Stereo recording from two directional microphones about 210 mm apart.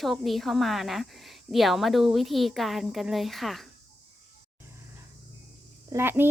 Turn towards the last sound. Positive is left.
turn(degrees=-10)  # may be behind; listen again after turning